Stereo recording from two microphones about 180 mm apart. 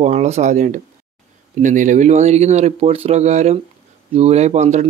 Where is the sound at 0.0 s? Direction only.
40° right (ahead or behind).